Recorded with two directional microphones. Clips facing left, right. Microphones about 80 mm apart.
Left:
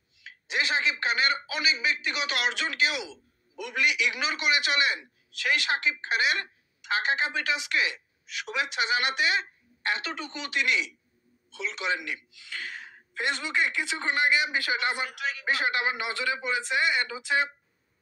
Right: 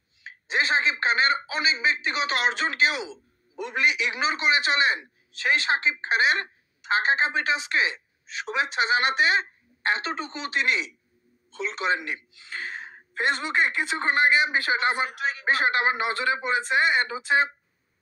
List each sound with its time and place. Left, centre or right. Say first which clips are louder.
0.2 s speech: right 4 dB; right